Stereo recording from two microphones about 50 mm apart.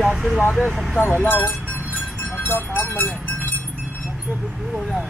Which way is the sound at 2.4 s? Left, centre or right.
Left.